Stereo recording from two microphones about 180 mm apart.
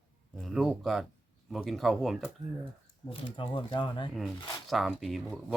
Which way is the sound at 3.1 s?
30° left (ahead or behind).